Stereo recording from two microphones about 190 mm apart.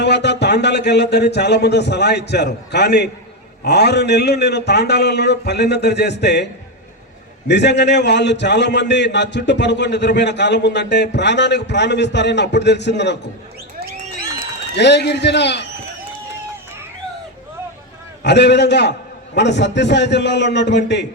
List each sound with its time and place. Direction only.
0.0 s a man's voice: 60° left (ahead or behind)
14.8 s a man's voice: 65° left (ahead or behind)
18.2 s a man's voice: 65° left (ahead or behind)